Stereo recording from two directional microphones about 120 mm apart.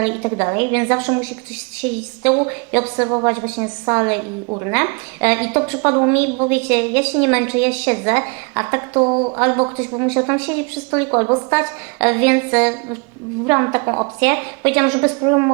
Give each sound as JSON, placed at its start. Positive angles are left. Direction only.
{"t": 0.0, "sound": "a woman's voice", "side_deg": -25}
{"t": 2.2, "sound": "a woman's voice", "side_deg": -30}
{"t": 6.5, "sound": "a woman's voice", "side_deg": -20}
{"t": 14.2, "sound": "a woman's voice", "side_deg": -20}